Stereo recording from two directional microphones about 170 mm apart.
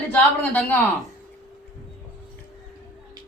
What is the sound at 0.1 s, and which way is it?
Speech, 10° left (ahead or behind).